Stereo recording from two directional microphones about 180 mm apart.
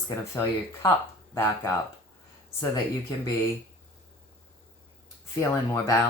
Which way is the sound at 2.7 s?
20° left (ahead or behind).